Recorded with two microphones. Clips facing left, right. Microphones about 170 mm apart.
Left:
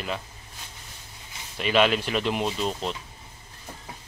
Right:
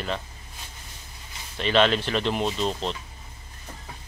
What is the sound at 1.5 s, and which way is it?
Speech, 10° left (ahead or behind).